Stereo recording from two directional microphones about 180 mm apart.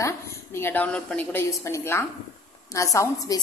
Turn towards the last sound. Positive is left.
turn(degrees=15)  # may be behind; listen again after turning